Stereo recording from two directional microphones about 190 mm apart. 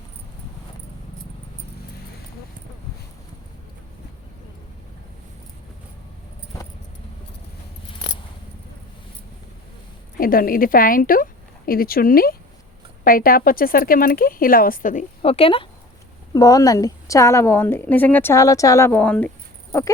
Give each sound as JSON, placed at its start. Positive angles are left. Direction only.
{"t": 10.2, "sound": "speech", "side_deg": 50}
{"t": 15.2, "sound": "speech", "side_deg": 30}
{"t": 16.3, "sound": "a woman's voice", "side_deg": 20}